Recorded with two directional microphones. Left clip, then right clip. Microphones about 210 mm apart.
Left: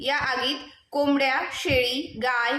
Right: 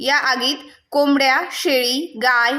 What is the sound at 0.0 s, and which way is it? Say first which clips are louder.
A woman's voice: right 7 dB; 45° right (ahead or behind).